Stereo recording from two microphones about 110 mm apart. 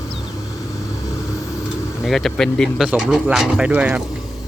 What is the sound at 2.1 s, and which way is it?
Speech, 5° left (ahead or behind).